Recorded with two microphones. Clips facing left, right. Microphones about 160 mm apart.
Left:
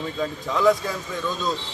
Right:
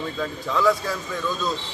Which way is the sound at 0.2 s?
15° left (ahead or behind).